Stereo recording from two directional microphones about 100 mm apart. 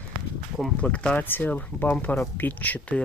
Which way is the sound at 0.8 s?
15° left (ahead or behind).